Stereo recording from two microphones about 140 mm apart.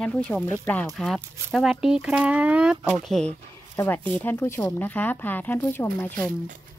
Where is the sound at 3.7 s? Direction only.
20° left (ahead or behind).